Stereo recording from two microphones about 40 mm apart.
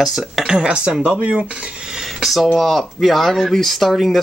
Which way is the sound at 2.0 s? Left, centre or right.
Centre.